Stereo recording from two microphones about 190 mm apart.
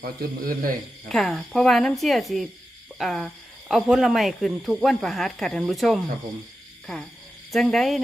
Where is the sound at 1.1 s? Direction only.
Centre (ahead or behind).